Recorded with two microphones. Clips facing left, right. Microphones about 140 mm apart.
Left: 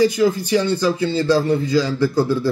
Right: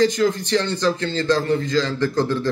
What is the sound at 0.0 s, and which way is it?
A man's voice, 10° left (ahead or behind).